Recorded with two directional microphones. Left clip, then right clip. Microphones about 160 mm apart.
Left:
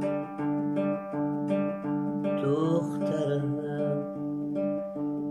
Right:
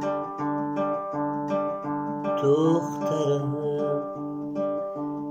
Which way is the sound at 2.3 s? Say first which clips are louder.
Right 7 dB; 10° right (ahead or behind).